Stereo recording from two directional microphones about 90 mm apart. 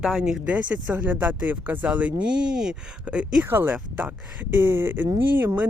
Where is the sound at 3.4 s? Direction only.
25° right (ahead or behind).